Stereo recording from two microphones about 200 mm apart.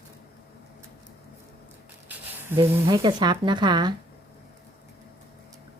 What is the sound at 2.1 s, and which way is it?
Speech, 10° right (ahead or behind).